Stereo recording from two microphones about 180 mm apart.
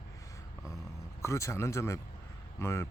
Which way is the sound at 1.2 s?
15° left (ahead or behind).